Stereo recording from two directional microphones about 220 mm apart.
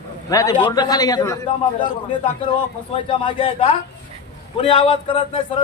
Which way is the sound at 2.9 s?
25° left (ahead or behind).